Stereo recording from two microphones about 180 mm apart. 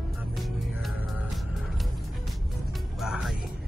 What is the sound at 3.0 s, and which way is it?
Music, centre (ahead or behind).